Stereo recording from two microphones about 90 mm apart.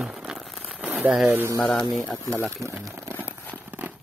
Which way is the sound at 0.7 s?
15° right (ahead or behind).